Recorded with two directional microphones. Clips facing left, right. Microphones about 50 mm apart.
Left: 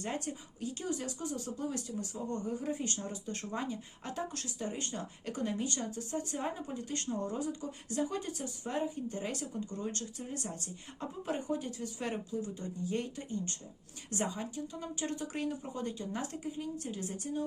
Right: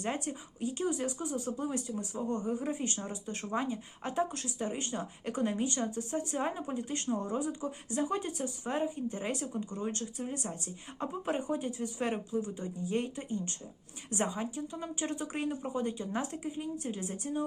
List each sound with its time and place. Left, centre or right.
0.6 s speech: right
11.1 s speech: right